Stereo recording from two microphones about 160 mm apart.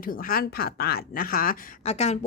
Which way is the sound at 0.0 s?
60° left (ahead or behind).